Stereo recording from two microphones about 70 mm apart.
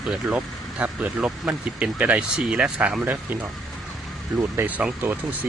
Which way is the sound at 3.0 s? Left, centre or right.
Right.